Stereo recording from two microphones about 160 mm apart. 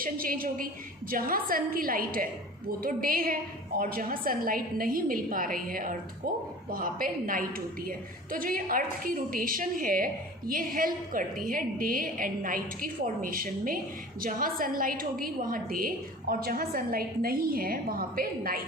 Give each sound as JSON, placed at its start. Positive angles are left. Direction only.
{"t": 0.0, "sound": "a woman's voice", "side_deg": -65}